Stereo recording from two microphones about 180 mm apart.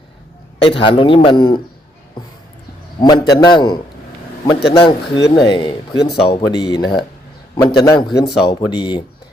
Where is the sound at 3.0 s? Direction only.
25° left (ahead or behind).